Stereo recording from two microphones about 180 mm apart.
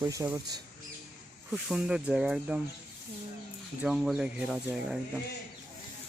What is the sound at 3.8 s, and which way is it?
Speech, centre (ahead or behind).